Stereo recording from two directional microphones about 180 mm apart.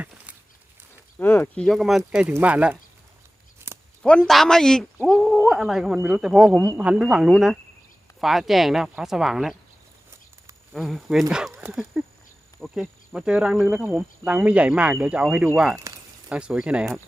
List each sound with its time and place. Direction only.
1.2 s speech: 10° left (ahead or behind); by 2.7 s 5° right (ahead or behind)
3.6 s a sound: 15° right (ahead or behind)
4.0 s speech: 5° left (ahead or behind)
10.7 s speech: centre (ahead or behind)
12.5 s speech: centre (ahead or behind)
15.7 s speech: 15° right (ahead or behind)
16.3 s speech: 5° right (ahead or behind)